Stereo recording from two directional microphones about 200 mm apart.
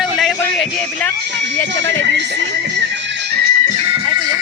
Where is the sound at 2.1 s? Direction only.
60° right (ahead or behind).